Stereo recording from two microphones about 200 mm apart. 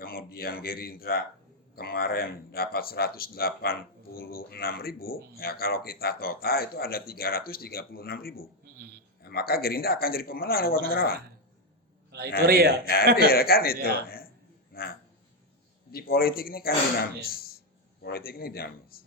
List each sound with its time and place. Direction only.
0.0 s speech: 50° left (ahead or behind)
12.1 s a sound: 50° right (ahead or behind)
12.5 s a man's voice: 50° right (ahead or behind)
13.1 s speech: 50° left (ahead or behind)
14.7 s a sound: 50° left (ahead or behind)
15.9 s speech: 50° left (ahead or behind)